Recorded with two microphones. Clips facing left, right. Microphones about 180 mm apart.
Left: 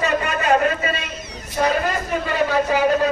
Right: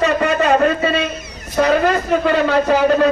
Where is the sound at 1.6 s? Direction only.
65° right (ahead or behind).